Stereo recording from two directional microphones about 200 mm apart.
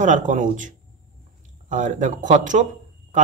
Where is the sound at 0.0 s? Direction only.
40° right (ahead or behind).